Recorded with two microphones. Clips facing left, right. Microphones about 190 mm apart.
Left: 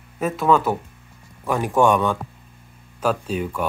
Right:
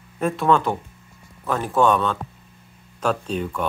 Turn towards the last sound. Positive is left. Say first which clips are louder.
# left 1 dB
turn(degrees=5)  # may be behind; listen again after turning